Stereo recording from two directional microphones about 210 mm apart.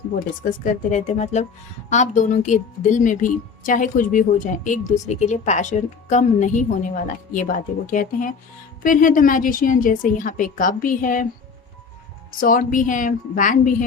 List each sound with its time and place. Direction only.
0.4 s speech: 40° left (ahead or behind)
12.4 s speech: 40° left (ahead or behind)